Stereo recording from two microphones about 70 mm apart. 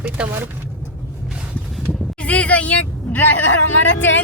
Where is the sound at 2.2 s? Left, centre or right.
Centre.